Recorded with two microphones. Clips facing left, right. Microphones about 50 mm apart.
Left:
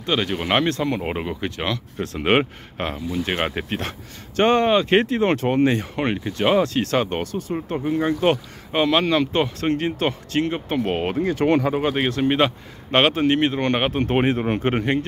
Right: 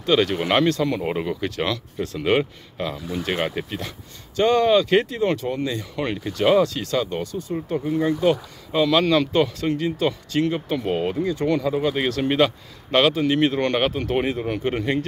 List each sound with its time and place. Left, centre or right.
0.0 s speech: centre
0.7 s speech: left
2.2 s speech: left
3.3 s speech: left
6.3 s speech: left
6.7 s speech: left
7.7 s speech: left
8.2 s speech: left
9.0 s speech: centre
9.6 s speech: left
11.7 s speech: left
13.4 s speech: left